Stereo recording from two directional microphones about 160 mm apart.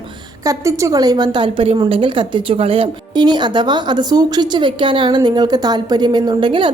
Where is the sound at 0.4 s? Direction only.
20° right (ahead or behind).